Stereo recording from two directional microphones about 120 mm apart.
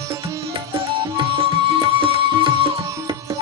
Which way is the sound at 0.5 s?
45° right (ahead or behind).